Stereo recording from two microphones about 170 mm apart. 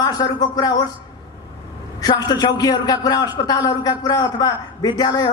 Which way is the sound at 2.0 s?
25° left (ahead or behind).